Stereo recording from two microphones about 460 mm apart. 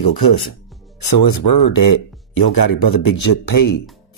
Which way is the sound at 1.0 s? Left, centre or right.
Left.